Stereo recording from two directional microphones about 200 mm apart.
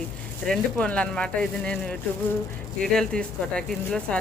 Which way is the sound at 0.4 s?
5° left (ahead or behind).